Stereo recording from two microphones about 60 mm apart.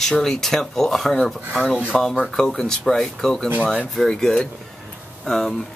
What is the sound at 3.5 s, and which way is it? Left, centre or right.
Speech, right.